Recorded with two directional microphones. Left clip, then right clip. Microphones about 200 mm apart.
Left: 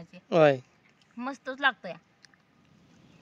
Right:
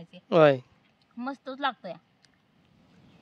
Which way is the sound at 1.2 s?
30° left (ahead or behind).